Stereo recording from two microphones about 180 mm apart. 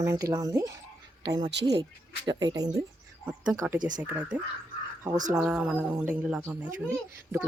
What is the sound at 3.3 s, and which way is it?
Speech, 10° right (ahead or behind).